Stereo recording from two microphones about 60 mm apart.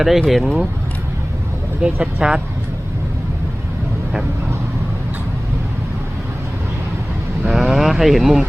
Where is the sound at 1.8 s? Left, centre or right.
Centre.